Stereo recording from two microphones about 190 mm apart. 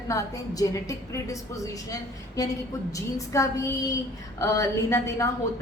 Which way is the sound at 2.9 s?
15° left (ahead or behind).